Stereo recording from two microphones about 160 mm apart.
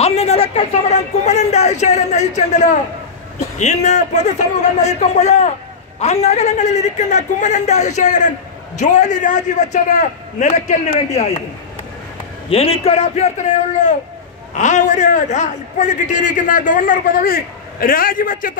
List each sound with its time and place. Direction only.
0.0 s speech: 40° left (ahead or behind)
12.4 s a man's voice: 40° left (ahead or behind); by 18.5 s 60° left (ahead or behind)